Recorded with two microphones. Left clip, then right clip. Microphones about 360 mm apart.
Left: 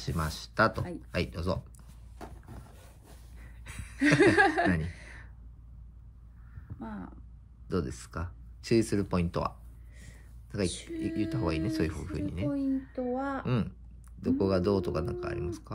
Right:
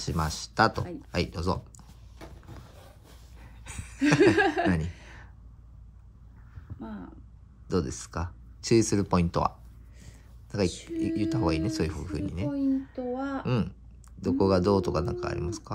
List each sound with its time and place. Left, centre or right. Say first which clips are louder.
0.0 s speech: right 4 dB; centre
3.3 s a sound: right 3 dB; centre
4.0 s chuckle: right 1 dB; left
4.8 s sigh: right 1 dB; left
6.8 s a sound: right 1 dB; left
7.6 s speech: right 4 dB; centre
10.5 s speech: right 4 dB; centre
12.9 s chuckle: even; left
13.5 s speech: right 3 dB; centre